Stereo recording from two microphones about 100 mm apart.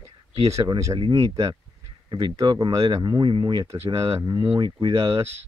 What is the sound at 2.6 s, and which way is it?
Speech, 55° right (ahead or behind).